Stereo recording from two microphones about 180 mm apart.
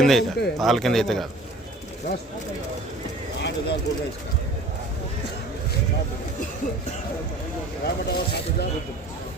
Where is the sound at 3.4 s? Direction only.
75° left (ahead or behind).